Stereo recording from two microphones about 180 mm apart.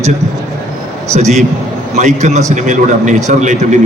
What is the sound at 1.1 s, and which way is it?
A man's voice, 40° right (ahead or behind).